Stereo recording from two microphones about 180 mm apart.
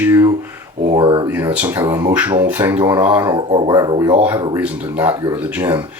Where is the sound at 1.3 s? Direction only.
10° right (ahead or behind).